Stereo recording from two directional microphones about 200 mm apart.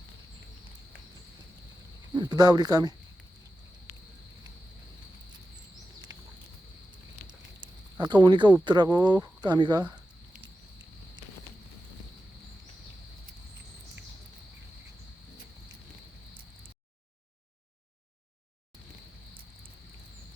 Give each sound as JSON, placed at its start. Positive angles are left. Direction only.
{"t": 2.1, "sound": "speech", "side_deg": -20}
{"t": 7.3, "sound": "a sound", "side_deg": -20}
{"t": 8.6, "sound": "speech", "side_deg": -20}